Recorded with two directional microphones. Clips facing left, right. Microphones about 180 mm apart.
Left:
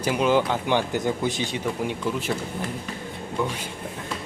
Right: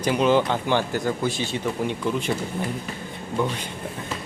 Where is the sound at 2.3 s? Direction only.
5° right (ahead or behind).